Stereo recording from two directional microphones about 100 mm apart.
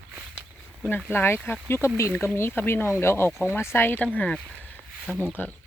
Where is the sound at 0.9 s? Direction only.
15° left (ahead or behind).